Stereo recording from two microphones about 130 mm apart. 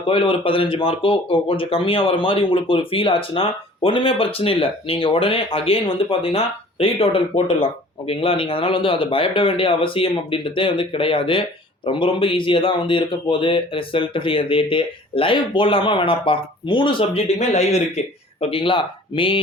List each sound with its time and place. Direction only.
0.1 s a man's voice: 40° left (ahead or behind)
17.3 s speech: 60° left (ahead or behind); by 19.4 s 40° left (ahead or behind)